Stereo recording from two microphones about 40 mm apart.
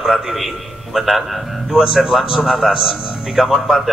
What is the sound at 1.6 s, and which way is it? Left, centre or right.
Speech, centre.